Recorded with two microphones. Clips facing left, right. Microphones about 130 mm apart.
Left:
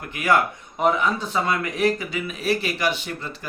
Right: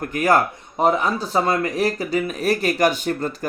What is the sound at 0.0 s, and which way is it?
Speech, 45° right (ahead or behind).